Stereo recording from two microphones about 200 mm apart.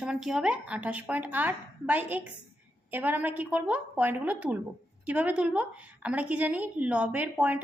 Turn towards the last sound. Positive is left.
turn(degrees=-5)  # may be behind; listen again after turning